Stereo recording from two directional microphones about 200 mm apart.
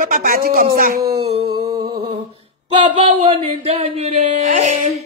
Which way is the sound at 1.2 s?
30° right (ahead or behind).